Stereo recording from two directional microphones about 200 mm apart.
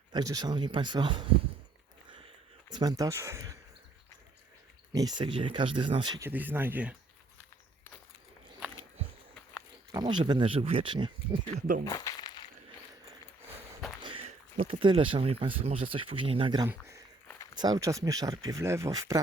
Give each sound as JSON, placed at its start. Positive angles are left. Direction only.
{"t": 0.1, "sound": "speech", "side_deg": -20}
{"t": 2.0, "sound": "a sound", "side_deg": -25}
{"t": 4.9, "sound": "speech", "side_deg": -20}
{"t": 9.9, "sound": "speech", "side_deg": -20}
{"t": 11.9, "sound": "a sound", "side_deg": 20}
{"t": 14.0, "sound": "speech", "side_deg": -25}